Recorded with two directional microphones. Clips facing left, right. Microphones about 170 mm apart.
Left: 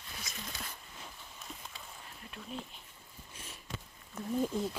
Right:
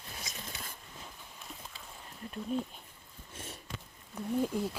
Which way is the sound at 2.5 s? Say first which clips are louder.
Right 9 dB; 45° right (ahead or behind).